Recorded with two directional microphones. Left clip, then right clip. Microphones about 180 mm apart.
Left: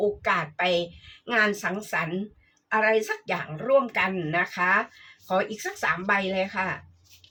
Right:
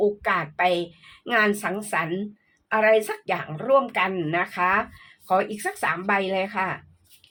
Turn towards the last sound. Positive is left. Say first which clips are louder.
# right 2 dB
turn(degrees=-45)  # may be behind; listen again after turning